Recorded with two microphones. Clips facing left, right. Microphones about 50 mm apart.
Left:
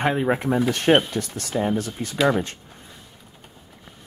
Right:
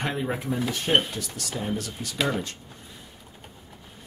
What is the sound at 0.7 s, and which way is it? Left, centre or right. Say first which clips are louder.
Speech: left 9 dB; left.